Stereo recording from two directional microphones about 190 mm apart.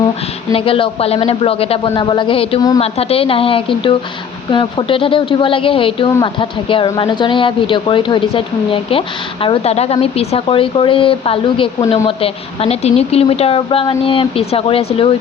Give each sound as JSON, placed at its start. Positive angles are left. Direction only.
{"t": 0.5, "sound": "a woman's voice", "side_deg": 30}
{"t": 2.8, "sound": "a woman's voice", "side_deg": 30}
{"t": 6.1, "sound": "speech", "side_deg": 15}
{"t": 6.4, "sound": "a woman's voice", "side_deg": 25}